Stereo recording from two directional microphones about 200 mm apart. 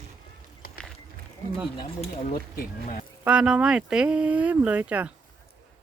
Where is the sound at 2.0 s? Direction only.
40° left (ahead or behind).